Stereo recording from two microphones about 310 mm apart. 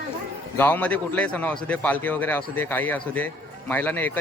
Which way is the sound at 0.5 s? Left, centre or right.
Centre.